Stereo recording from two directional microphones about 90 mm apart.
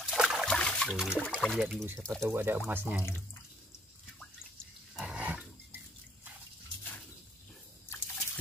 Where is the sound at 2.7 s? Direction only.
20° right (ahead or behind).